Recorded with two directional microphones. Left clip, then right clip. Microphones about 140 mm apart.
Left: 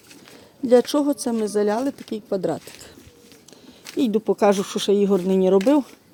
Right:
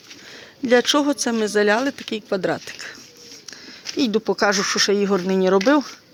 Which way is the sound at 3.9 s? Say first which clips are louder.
Right 1 dB; 20° right (ahead or behind).